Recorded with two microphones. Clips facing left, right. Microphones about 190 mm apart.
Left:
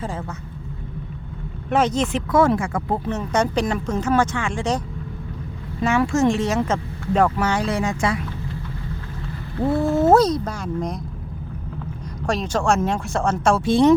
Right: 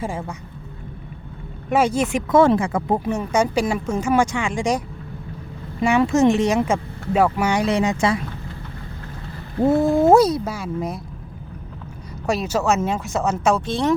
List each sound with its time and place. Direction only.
0.0 s speech: 15° right (ahead or behind)
1.7 s speech: 10° right (ahead or behind)
2.3 s speech: 25° right (ahead or behind)
5.8 s speech: 20° right (ahead or behind)
9.6 s speech: 20° right (ahead or behind); by 11.0 s 5° right (ahead or behind)
12.2 s speech: 5° right (ahead or behind)
13.7 s speech: 15° left (ahead or behind)